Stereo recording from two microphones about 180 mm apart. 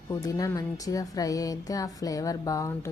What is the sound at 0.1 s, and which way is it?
A woman's voice, 20° left (ahead or behind).